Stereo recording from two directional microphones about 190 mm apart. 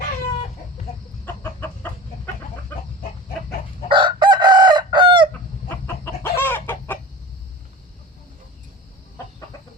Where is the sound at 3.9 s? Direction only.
25° right (ahead or behind).